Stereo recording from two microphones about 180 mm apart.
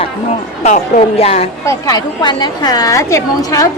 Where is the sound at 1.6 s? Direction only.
20° left (ahead or behind).